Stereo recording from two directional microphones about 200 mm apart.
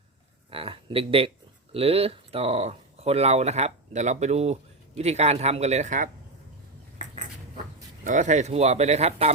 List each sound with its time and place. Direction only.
0.5 s speech: 25° right (ahead or behind)
8.0 s speech: 40° right (ahead or behind)